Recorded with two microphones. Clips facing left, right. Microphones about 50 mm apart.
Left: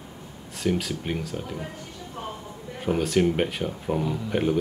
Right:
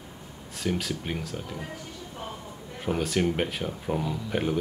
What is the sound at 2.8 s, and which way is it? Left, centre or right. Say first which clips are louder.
Speech: left 4 dB; centre.